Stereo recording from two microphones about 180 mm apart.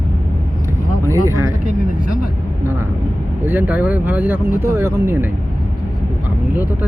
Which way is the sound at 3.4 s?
10° right (ahead or behind).